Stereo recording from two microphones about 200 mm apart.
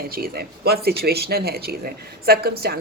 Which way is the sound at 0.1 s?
50° right (ahead or behind).